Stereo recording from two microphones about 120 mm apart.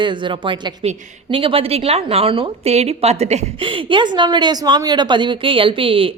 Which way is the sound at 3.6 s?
45° right (ahead or behind).